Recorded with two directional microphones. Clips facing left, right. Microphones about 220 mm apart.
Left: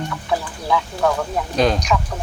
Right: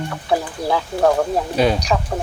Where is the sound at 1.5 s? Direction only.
5° right (ahead or behind).